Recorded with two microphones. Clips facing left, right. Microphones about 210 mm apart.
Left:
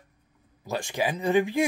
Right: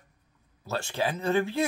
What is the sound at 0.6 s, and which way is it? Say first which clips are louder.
Speech: left 2 dB; 15° left (ahead or behind).